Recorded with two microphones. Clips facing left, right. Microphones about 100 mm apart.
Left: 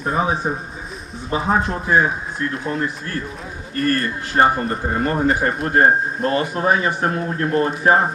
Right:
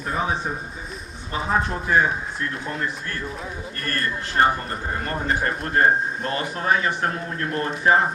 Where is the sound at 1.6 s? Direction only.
5° left (ahead or behind).